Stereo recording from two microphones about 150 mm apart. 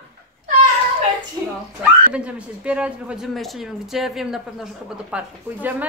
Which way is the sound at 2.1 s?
10° right (ahead or behind).